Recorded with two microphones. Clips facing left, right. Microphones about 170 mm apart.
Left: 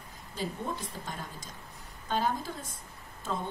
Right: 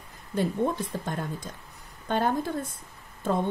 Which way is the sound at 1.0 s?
60° right (ahead or behind).